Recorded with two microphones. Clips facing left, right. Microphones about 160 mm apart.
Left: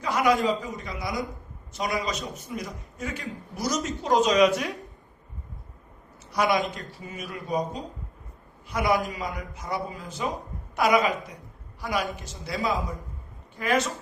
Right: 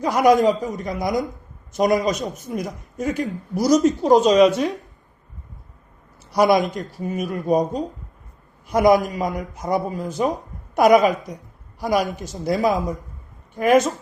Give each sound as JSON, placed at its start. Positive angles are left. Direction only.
{"t": 0.0, "sound": "a man's voice", "side_deg": -40}
{"t": 6.3, "sound": "a man's voice", "side_deg": -35}
{"t": 7.0, "sound": "a man's voice", "side_deg": -50}